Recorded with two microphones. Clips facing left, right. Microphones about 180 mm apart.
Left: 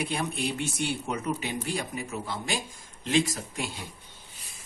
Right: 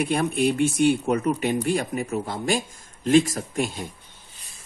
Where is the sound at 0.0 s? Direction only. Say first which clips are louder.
Right 8 dB; 55° right (ahead or behind).